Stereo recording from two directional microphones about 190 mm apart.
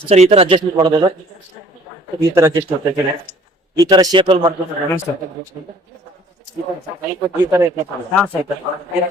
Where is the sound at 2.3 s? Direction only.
15° right (ahead or behind).